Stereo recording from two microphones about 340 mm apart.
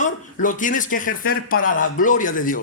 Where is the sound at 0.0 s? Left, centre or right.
Left.